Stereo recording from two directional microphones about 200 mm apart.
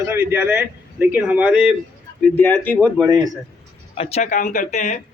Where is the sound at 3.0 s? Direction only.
20° right (ahead or behind).